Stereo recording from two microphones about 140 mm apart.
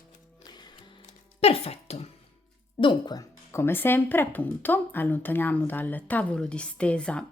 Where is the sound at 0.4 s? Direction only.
30° left (ahead or behind).